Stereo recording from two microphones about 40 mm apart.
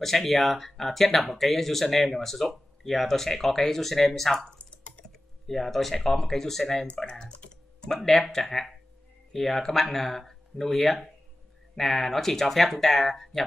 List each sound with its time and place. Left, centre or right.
0.0 s speech: centre
5.5 s speech: centre
7.1 s typing: left
7.9 s speech: centre